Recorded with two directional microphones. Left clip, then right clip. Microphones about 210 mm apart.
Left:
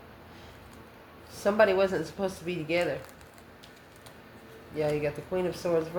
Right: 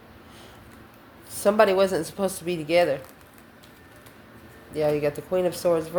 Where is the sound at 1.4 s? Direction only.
45° right (ahead or behind).